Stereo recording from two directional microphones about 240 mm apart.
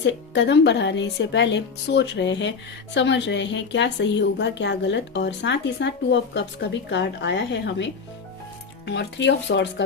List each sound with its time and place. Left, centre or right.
0.0 s speech: left
8.9 s speech: left